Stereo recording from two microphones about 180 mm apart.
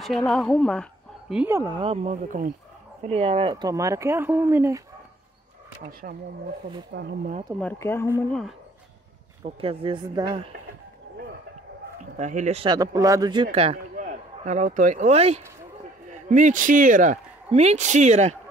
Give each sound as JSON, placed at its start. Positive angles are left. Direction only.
{"t": 0.0, "sound": "a woman's voice", "side_deg": 0}
{"t": 1.3, "sound": "speech", "side_deg": -10}
{"t": 1.8, "sound": "speech", "side_deg": -35}
{"t": 3.0, "sound": "speech", "side_deg": -35}
{"t": 5.9, "sound": "speech", "side_deg": -55}
{"t": 6.9, "sound": "speech", "side_deg": -70}
{"t": 7.6, "sound": "speech", "side_deg": 15}
{"t": 9.4, "sound": "speech", "side_deg": -30}
{"t": 12.2, "sound": "speech", "side_deg": -45}
{"t": 12.6, "sound": "speech", "side_deg": -20}
{"t": 13.9, "sound": "speech", "side_deg": -45}